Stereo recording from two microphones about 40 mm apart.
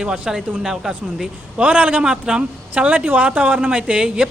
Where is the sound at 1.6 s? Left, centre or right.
Right.